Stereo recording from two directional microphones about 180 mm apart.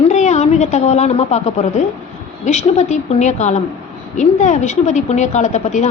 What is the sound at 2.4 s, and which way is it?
A woman's voice, 40° left (ahead or behind).